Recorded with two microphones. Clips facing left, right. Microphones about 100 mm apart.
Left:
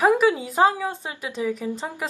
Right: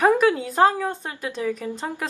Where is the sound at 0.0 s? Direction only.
10° left (ahead or behind).